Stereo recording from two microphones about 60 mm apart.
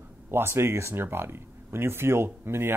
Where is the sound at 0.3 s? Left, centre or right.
Right.